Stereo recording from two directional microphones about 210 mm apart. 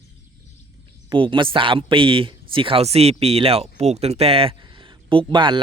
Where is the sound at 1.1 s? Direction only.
25° right (ahead or behind).